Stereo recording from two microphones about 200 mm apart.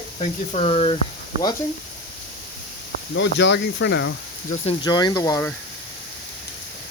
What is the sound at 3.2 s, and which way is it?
Speech, 60° left (ahead or behind).